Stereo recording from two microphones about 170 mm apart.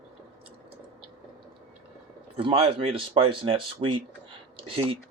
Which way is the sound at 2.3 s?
35° right (ahead or behind).